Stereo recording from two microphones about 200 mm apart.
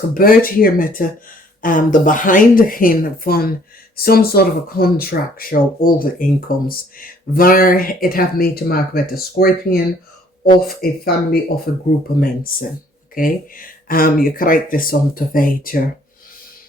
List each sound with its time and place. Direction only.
0.1 s speech: 45° left (ahead or behind)